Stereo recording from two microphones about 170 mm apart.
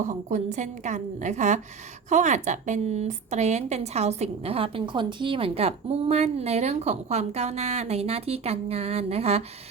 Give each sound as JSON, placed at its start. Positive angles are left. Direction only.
{"t": 0.0, "sound": "a woman's voice", "side_deg": -45}